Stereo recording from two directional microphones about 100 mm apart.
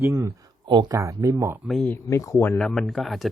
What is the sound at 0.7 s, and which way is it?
Speech, 50° right (ahead or behind).